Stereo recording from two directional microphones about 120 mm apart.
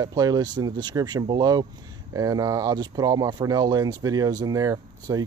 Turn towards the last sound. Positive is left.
turn(degrees=-30)  # may be behind; listen again after turning